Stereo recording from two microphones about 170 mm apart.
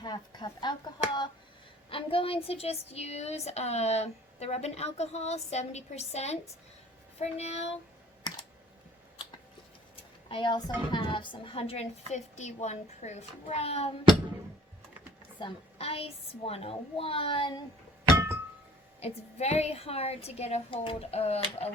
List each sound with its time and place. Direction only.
0.0 s speech: 25° left (ahead or behind)
8.3 s computer keyboard: 25° left (ahead or behind)
9.9 s speech: 30° left (ahead or behind)
15.4 s speech: 30° left (ahead or behind)
18.9 s speech: 35° left (ahead or behind)